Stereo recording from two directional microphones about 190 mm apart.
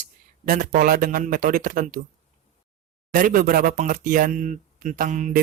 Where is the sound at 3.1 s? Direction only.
45° right (ahead or behind).